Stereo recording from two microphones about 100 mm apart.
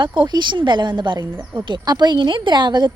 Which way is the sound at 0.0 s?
50° right (ahead or behind).